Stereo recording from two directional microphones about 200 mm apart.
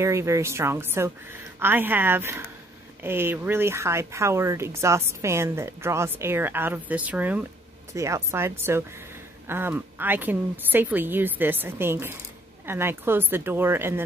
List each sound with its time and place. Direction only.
0.0 s speech: 15° right (ahead or behind)